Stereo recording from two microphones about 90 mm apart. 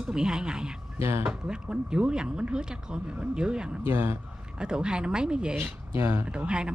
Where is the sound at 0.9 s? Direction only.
30° right (ahead or behind).